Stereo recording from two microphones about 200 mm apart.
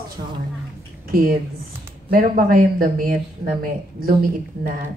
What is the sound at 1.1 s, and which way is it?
A woman's voice, 45° right (ahead or behind).